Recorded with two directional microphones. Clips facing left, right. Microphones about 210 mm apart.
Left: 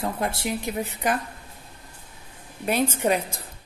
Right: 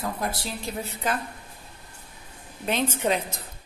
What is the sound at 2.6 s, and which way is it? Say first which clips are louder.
Speech: left 2 dB; 10° left (ahead or behind).